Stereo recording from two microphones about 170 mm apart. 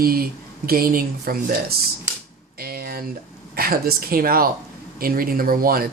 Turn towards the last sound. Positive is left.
turn(degrees=-60)  # may be behind; listen again after turning